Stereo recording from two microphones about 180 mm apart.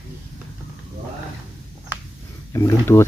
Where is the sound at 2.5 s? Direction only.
15° left (ahead or behind).